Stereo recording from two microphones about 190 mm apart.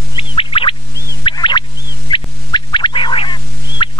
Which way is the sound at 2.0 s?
25° left (ahead or behind).